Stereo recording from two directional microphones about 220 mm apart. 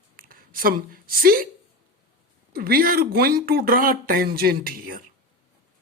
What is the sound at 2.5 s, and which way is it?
Speech, 40° right (ahead or behind).